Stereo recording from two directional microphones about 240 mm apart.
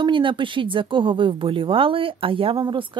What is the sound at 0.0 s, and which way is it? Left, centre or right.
Speech, centre.